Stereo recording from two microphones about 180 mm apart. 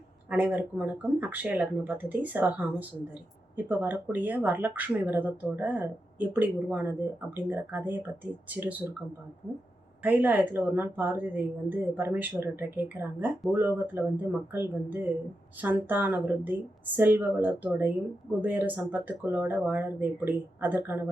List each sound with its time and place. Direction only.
0.3 s speech: 10° right (ahead or behind)
10.0 s speech: 10° right (ahead or behind)